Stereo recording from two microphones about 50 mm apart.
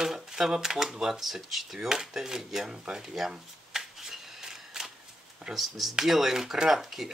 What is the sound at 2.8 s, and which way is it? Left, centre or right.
Shuffling cards, centre.